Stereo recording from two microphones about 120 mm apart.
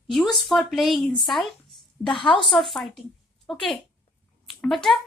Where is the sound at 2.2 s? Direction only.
45° left (ahead or behind).